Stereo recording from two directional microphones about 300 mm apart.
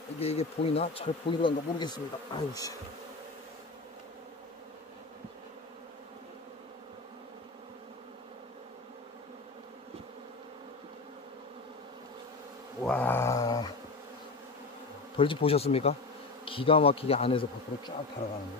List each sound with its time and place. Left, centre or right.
0.2 s speech: centre
12.8 s a sound: centre
15.1 s bee: centre
16.4 s speech: centre